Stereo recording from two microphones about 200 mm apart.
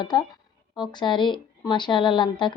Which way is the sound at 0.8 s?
20° left (ahead or behind).